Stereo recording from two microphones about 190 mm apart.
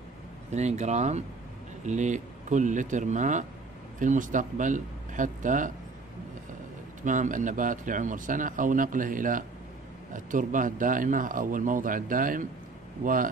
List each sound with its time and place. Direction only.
0.5 s speech: 35° right (ahead or behind)
7.0 s speech: 40° right (ahead or behind)